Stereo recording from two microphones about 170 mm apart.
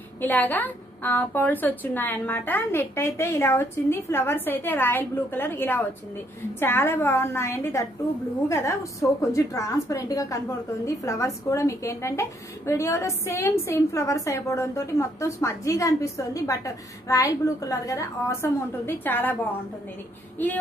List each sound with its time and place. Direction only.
0.2 s a woman's voice: 10° left (ahead or behind)